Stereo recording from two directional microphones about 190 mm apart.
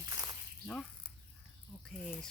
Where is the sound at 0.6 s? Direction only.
5° left (ahead or behind).